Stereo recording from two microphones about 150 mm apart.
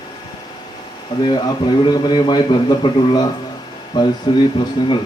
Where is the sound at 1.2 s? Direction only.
30° left (ahead or behind).